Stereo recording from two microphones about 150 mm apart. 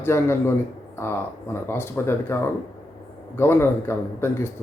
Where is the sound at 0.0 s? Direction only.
15° left (ahead or behind).